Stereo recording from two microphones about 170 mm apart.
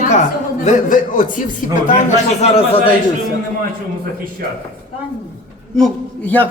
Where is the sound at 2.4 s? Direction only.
35° left (ahead or behind).